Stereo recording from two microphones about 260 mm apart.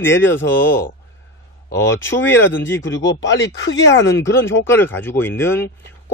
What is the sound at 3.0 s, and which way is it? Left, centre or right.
Speech, left.